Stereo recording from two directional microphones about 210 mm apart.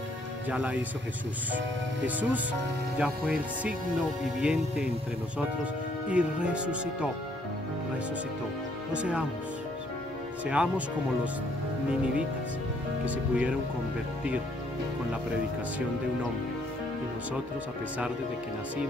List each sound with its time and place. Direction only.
0.5 s speech: 5° right (ahead or behind)
2.0 s speech: 5° right (ahead or behind)
6.0 s speech: 5° right (ahead or behind)
8.9 s speech: 5° right (ahead or behind)
10.4 s speech: 5° right (ahead or behind)
13.0 s speech: 5° right (ahead or behind)